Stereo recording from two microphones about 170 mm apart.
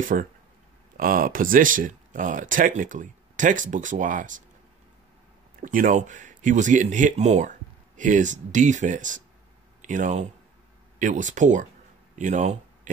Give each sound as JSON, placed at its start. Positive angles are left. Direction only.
{"t": 0.0, "sound": "speech", "side_deg": -50}
{"t": 5.6, "sound": "speech", "side_deg": -50}